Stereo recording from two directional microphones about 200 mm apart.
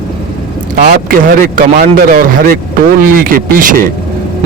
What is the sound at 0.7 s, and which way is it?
Speech, 45° right (ahead or behind).